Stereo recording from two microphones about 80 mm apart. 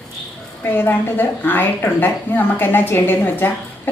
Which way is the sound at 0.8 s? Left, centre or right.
Left.